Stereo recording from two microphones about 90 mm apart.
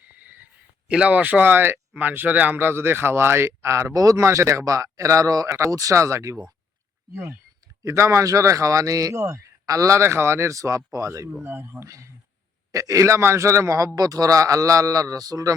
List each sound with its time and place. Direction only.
0.2 s a sound: 15° right (ahead or behind)
0.9 s speech: 15° right (ahead or behind); by 6.4 s 35° right (ahead or behind)
7.9 s speech: 30° right (ahead or behind)
11.4 s speech: 25° right (ahead or behind); by 15.5 s 40° right (ahead or behind)